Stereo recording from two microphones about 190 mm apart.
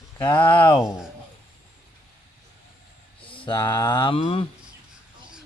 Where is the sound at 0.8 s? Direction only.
5° right (ahead or behind).